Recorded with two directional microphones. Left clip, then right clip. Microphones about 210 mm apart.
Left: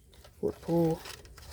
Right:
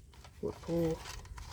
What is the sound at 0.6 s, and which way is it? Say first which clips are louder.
Speech: left 5 dB; 35° left (ahead or behind).